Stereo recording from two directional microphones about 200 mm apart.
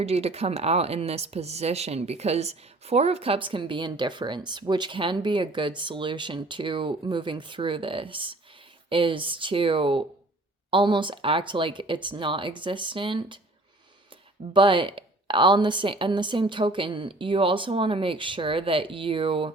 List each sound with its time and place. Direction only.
0.0 s speech: 30° right (ahead or behind)
14.5 s speech: 25° right (ahead or behind)